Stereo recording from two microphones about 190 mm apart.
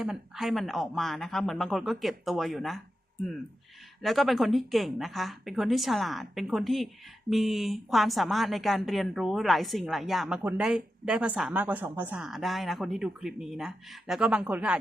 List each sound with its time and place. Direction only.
0.0 s a woman's voice: centre (ahead or behind)
4.0 s a woman's voice: centre (ahead or behind)